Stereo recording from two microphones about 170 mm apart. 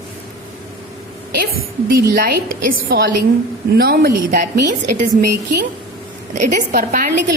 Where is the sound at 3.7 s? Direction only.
65° right (ahead or behind).